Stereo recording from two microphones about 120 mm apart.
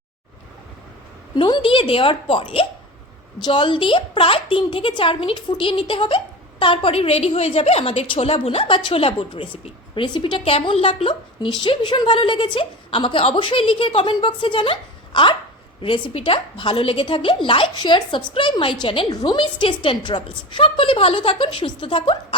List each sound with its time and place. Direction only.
1.4 s a woman's voice: 45° left (ahead or behind)